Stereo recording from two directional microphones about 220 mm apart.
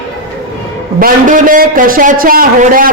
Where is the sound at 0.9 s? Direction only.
40° right (ahead or behind).